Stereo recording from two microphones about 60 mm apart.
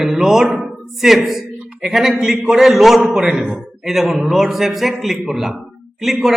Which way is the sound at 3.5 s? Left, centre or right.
Centre.